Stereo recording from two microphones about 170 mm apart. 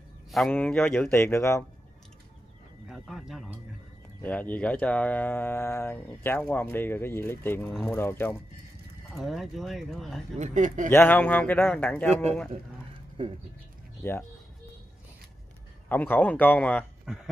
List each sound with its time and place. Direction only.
0.3 s speech: 5° left (ahead or behind)
1.2 s speech: 15° left (ahead or behind)
2.9 s speech: centre (ahead or behind)
4.2 s speech: 10° left (ahead or behind)
9.1 s speech: centre (ahead or behind)
10.3 s speech: 45° right (ahead or behind)
10.9 s speech: 10° left (ahead or behind)
13.2 s speech: 30° right (ahead or behind)
15.9 s speech: 10° left (ahead or behind)
17.1 s speech: 5° right (ahead or behind)